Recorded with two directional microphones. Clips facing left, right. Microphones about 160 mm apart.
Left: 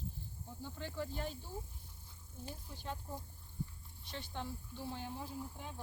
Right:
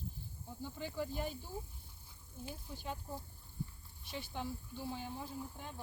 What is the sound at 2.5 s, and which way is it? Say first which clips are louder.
Speech: right 1 dB; 5° right (ahead or behind).